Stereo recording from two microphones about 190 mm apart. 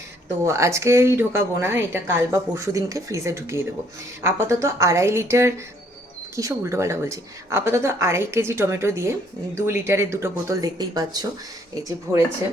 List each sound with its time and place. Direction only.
0.4 s speech: 15° right (ahead or behind)